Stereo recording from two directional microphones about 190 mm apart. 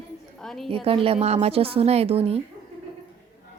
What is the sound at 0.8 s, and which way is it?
A woman's voice, 30° right (ahead or behind).